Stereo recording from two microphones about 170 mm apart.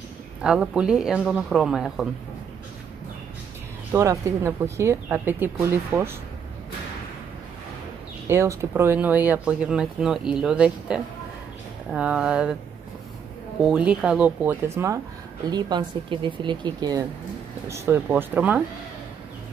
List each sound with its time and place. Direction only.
0.4 s speech: 5° right (ahead or behind)
3.9 s speech: 15° right (ahead or behind)
8.3 s speech: 15° right (ahead or behind)
13.6 s speech: 5° right (ahead or behind)
15.5 s speech: 25° right (ahead or behind); by 18.6 s 10° right (ahead or behind)